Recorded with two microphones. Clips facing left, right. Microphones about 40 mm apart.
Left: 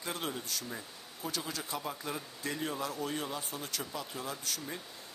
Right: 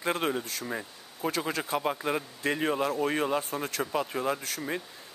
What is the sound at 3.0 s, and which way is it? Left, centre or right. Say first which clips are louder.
Speech: right 9 dB; right.